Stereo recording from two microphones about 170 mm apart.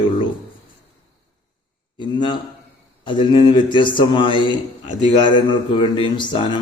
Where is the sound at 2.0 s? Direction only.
25° left (ahead or behind).